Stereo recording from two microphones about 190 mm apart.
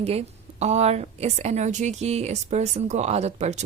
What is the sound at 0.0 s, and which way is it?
A woman's voice, 35° right (ahead or behind).